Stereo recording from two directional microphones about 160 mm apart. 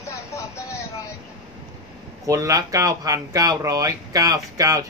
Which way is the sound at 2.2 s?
20° right (ahead or behind).